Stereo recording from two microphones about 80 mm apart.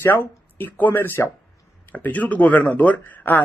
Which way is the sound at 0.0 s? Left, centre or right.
Left.